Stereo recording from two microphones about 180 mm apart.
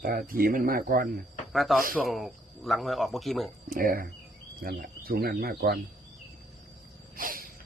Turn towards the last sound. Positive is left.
turn(degrees=-50)  # may be behind; listen again after turning